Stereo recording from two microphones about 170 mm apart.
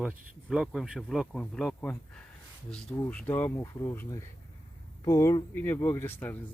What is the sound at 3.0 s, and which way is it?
Speech, 10° left (ahead or behind).